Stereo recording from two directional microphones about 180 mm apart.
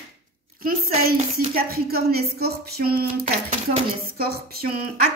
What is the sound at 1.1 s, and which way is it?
Speech, 55° right (ahead or behind).